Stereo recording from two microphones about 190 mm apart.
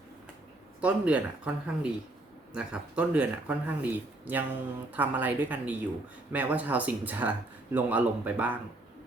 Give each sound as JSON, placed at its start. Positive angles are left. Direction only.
{"t": 0.8, "sound": "speech", "side_deg": -5}